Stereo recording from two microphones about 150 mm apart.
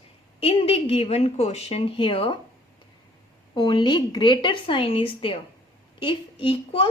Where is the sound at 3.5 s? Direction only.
30° left (ahead or behind).